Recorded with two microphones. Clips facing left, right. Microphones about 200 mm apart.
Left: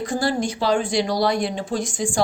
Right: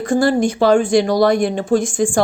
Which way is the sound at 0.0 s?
50° right (ahead or behind).